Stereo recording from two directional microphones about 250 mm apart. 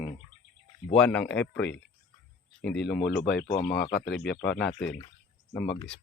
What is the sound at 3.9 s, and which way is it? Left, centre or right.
Speech, left.